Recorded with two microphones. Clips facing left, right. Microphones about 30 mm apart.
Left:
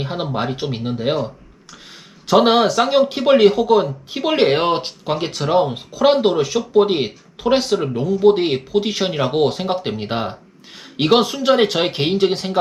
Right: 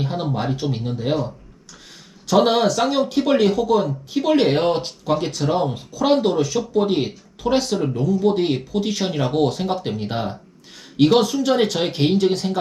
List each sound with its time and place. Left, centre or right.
0.0 s speech: left